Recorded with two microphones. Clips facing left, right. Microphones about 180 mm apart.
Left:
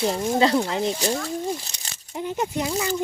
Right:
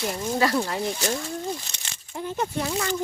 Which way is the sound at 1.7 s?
35° left (ahead or behind).